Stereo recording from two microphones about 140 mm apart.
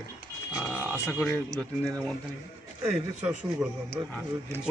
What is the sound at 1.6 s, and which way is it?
Speech, 10° left (ahead or behind).